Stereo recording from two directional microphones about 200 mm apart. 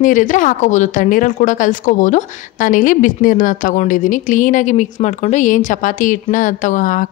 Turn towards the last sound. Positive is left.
turn(degrees=40)  # may be behind; listen again after turning